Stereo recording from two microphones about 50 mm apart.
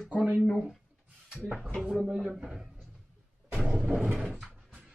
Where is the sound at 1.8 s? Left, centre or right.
Centre.